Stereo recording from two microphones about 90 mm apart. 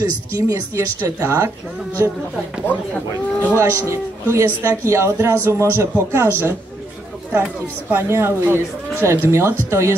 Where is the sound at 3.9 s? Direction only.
30° right (ahead or behind).